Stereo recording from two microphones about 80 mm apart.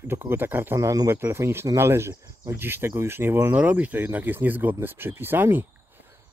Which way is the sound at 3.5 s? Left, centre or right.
Centre.